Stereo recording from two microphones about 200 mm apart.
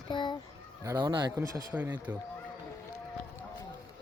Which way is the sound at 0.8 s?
15° right (ahead or behind).